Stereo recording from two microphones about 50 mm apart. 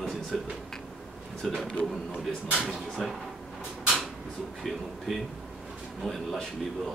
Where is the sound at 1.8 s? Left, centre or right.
Left.